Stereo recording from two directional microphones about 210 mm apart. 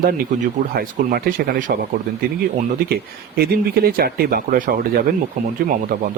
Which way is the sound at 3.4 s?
45° right (ahead or behind).